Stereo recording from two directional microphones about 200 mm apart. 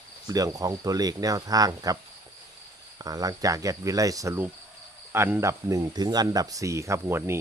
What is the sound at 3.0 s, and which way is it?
Speech, 20° right (ahead or behind).